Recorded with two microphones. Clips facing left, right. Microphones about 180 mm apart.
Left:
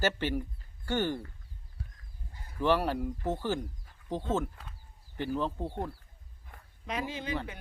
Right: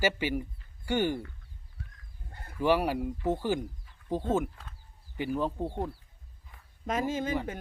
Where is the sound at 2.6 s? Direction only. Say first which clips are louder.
Right 2 dB; 10° right (ahead or behind).